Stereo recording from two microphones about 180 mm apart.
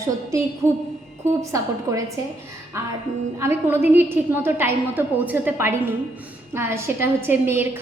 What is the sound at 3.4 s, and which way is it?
A woman's voice, 10° right (ahead or behind).